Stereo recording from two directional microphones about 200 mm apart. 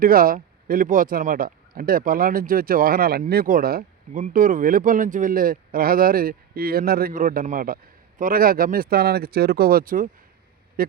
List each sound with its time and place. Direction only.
0.0 s speech: 45° right (ahead or behind)